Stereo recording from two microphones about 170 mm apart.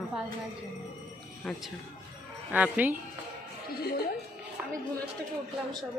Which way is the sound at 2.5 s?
10° right (ahead or behind).